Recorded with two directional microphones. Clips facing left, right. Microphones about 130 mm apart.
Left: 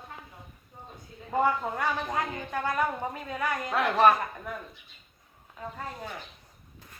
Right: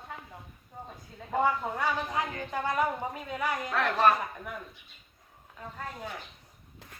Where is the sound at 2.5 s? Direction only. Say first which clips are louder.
Even; 20° right (ahead or behind).